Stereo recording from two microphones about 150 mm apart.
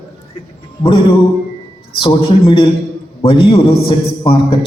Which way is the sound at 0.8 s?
35° left (ahead or behind).